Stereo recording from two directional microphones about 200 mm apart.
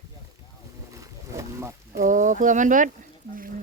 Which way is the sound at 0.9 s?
15° right (ahead or behind).